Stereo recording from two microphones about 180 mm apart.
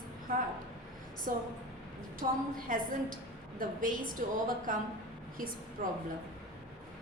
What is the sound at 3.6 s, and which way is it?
Speech, 50° right (ahead or behind).